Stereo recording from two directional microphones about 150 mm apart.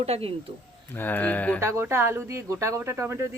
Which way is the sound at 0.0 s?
40° right (ahead or behind).